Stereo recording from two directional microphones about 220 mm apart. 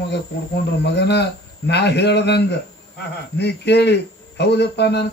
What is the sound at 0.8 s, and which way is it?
Speech, 50° left (ahead or behind).